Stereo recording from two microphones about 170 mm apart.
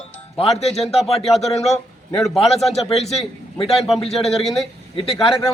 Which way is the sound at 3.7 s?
Centre (ahead or behind).